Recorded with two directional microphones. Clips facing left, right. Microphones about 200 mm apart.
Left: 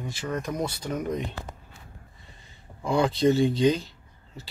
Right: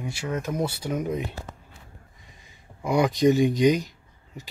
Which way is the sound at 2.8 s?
15° right (ahead or behind).